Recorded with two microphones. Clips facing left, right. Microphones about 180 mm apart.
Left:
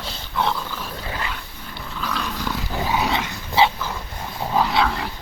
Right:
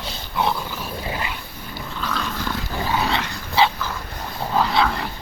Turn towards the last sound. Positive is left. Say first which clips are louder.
# even
turn(degrees=10)  # may be behind; listen again after turning